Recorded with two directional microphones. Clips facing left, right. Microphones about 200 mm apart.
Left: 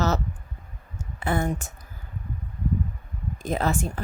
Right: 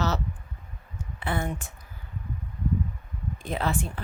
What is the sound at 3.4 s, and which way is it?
Speech, 45° left (ahead or behind).